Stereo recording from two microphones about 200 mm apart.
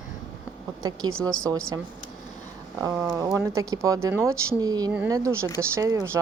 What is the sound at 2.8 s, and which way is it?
Speech, 15° right (ahead or behind).